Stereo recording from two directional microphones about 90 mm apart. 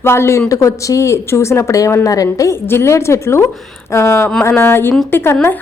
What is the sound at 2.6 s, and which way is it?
A woman's voice, 30° left (ahead or behind).